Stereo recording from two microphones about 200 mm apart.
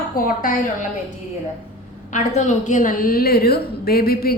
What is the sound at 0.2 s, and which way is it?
Speech, 45° left (ahead or behind).